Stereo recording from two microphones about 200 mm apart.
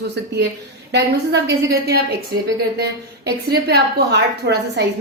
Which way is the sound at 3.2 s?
55° right (ahead or behind).